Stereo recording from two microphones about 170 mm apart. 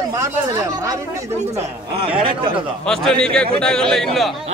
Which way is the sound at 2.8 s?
5° left (ahead or behind).